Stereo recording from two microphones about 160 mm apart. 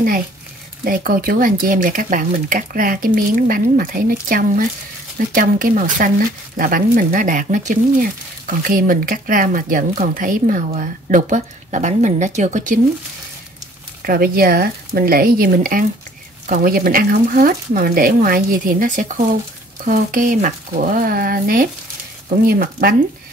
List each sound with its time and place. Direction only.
0.8 s speech: 60° right (ahead or behind)
14.0 s speech: 70° right (ahead or behind)